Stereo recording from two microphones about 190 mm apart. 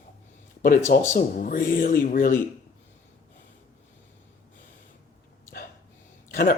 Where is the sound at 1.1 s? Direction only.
45° left (ahead or behind).